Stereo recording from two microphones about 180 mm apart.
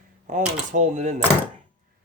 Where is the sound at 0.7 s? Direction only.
40° right (ahead or behind).